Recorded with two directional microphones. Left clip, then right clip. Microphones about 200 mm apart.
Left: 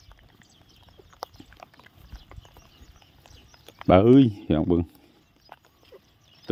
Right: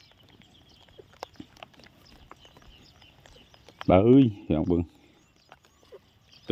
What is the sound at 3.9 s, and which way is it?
Speech, 10° left (ahead or behind).